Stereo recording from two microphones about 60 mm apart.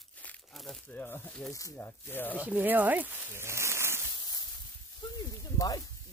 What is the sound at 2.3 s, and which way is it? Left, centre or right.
Speech, right.